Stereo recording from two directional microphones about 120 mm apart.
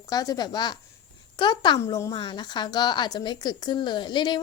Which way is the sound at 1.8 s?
30° left (ahead or behind).